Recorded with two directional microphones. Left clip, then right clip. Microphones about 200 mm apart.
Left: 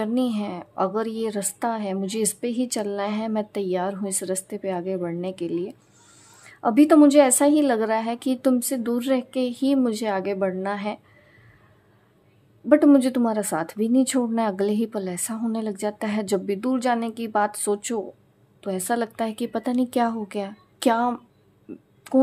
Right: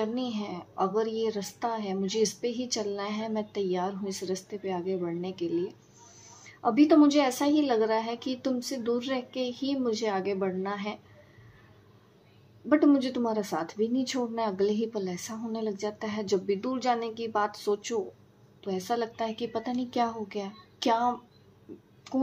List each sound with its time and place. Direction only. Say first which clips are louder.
0.0 s a woman's voice: left 7 dB; 45° left (ahead or behind)
12.6 s a woman's voice: left 7 dB; 45° left (ahead or behind)